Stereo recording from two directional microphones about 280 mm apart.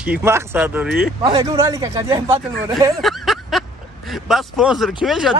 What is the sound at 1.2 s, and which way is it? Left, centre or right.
A man's voice, centre.